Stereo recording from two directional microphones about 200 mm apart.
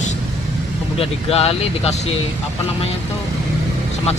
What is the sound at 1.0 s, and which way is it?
Speech, 30° left (ahead or behind).